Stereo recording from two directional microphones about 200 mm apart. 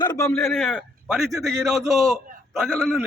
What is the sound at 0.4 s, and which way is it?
A man's voice, centre (ahead or behind).